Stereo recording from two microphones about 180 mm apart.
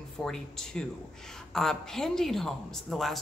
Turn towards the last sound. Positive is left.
turn(degrees=0)  # may be behind; listen again after turning